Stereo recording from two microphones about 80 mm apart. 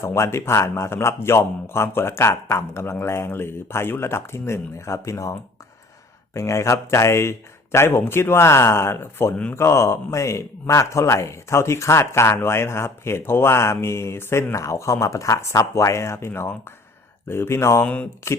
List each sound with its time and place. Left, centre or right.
0.0 s a man's voice: left
6.3 s a man's voice: left
17.8 s speech: centre